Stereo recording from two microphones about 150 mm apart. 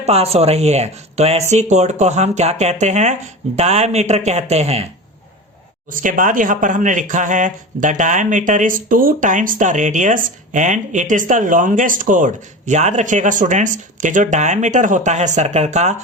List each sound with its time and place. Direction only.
0.0 s speech: 45° right (ahead or behind)
5.9 s speech: 60° right (ahead or behind)